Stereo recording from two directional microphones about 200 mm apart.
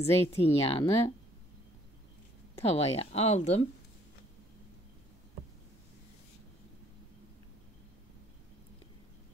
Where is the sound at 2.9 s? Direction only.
30° left (ahead or behind).